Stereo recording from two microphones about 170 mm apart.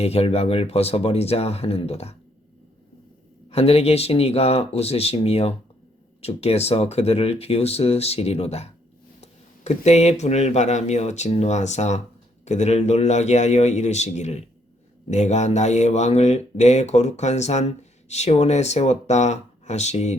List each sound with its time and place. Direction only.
0.0 s speech: 35° left (ahead or behind)
3.5 s speech: 35° left (ahead or behind)